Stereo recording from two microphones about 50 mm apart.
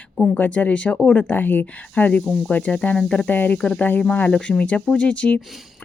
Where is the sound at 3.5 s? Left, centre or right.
Centre.